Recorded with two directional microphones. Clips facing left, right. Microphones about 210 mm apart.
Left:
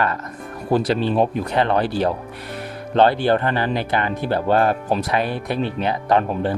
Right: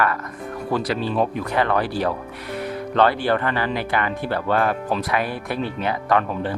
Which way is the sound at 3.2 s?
30° left (ahead or behind).